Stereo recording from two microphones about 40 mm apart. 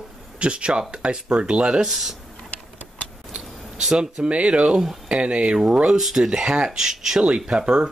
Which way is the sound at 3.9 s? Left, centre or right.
Right.